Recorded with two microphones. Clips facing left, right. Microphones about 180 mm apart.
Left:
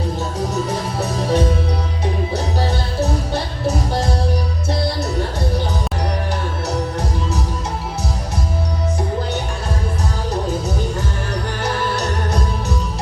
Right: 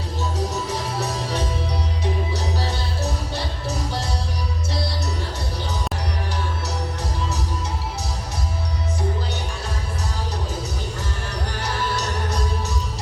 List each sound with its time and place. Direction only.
0.9 s music: 55° left (ahead or behind)
11.6 s music: 55° left (ahead or behind)